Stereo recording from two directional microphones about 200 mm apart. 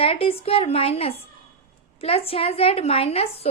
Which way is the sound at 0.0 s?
30° left (ahead or behind).